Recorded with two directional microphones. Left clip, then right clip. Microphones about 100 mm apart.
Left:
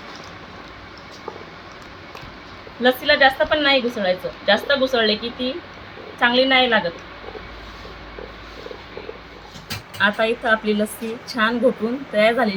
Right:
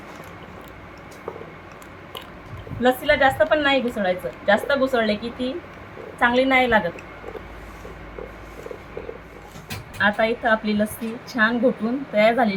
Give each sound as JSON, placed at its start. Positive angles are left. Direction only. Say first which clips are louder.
{"t": 2.8, "sound": "a woman's voice", "louder": "left 2 dB", "side_deg": -10}
{"t": 10.0, "sound": "a woman's voice", "louder": "left 1 dB", "side_deg": 5}